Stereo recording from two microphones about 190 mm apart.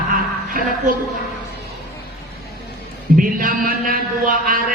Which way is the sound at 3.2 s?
45° right (ahead or behind).